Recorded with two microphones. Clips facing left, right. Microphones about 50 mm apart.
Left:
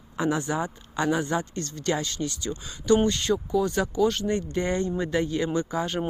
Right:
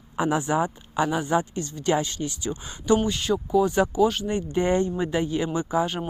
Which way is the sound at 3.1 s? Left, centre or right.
Centre.